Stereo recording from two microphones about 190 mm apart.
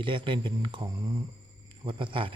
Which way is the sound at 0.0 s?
25° right (ahead or behind).